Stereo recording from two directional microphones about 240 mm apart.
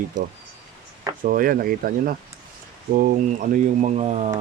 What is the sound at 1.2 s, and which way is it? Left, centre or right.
Speech, right.